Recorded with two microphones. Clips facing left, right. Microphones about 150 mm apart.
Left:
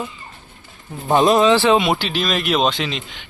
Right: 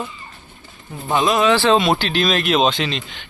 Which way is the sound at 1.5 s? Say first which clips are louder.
Even; 20° left (ahead or behind).